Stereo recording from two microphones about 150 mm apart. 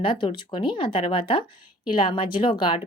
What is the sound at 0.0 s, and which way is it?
Speech, 35° left (ahead or behind).